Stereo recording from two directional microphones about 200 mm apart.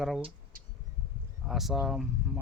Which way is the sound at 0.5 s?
45° right (ahead or behind).